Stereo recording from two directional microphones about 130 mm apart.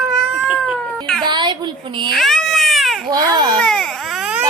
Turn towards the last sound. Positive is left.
turn(degrees=-5)  # may be behind; listen again after turning